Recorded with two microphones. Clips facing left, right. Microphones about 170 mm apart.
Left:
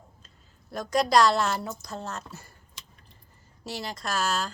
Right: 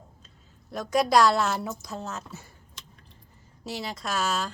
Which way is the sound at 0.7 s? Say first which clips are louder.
Right 1 dB; 5° right (ahead or behind).